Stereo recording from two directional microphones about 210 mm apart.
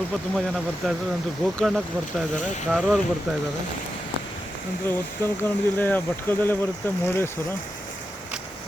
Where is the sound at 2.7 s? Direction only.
5° right (ahead or behind).